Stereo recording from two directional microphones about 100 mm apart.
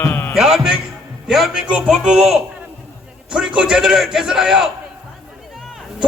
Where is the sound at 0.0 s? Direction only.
25° left (ahead or behind).